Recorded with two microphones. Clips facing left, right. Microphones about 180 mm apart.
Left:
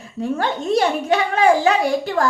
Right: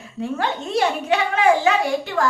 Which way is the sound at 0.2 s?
40° left (ahead or behind).